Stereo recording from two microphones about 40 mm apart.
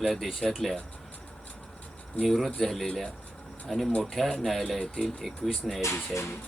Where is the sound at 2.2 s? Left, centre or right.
Centre.